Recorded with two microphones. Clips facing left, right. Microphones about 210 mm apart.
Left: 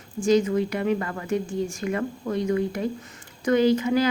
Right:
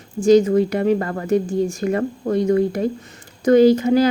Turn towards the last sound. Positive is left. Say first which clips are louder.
# right 7 dB
turn(degrees=-40)  # may be behind; listen again after turning